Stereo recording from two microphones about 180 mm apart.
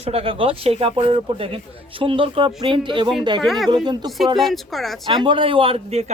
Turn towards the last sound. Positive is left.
turn(degrees=-35)  # may be behind; listen again after turning